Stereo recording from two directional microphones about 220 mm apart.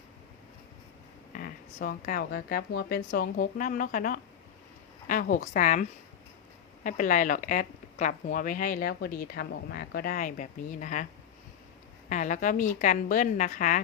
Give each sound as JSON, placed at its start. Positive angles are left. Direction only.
{"t": 1.3, "sound": "a woman's voice", "side_deg": 40}
{"t": 6.8, "sound": "a woman's voice", "side_deg": 35}
{"t": 12.0, "sound": "a woman's voice", "side_deg": 35}